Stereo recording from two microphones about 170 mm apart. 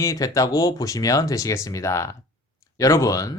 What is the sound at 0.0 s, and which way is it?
Speech, 20° left (ahead or behind).